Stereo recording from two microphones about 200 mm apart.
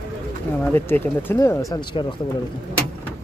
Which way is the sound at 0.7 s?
10° left (ahead or behind).